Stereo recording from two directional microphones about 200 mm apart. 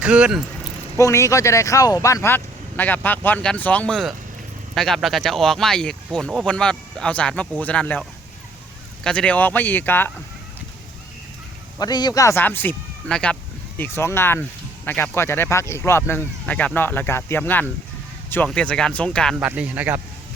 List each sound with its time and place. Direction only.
0.0 s speech: 5° right (ahead or behind)
0.9 s speech: 15° left (ahead or behind)
9.0 s speech: 5° left (ahead or behind)
11.8 s speech: 20° left (ahead or behind); by 19.5 s 5° left (ahead or behind)
19.5 s speech: 10° right (ahead or behind)